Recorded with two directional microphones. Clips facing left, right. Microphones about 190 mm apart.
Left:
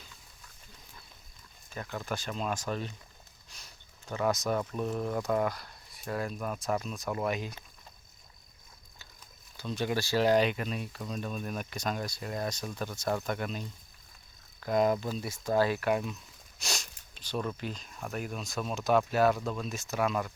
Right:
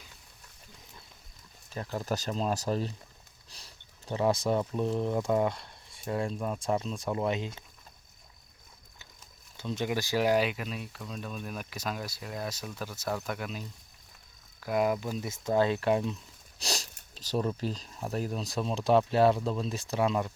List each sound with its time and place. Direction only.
1.7 s speech: 30° right (ahead or behind)
9.6 s speech: 20° right (ahead or behind)
16.6 s sniff: 35° right (ahead or behind)
17.6 s speech: 35° right (ahead or behind)